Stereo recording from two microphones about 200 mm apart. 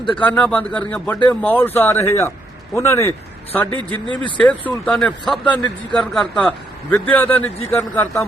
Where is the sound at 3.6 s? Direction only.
25° right (ahead or behind).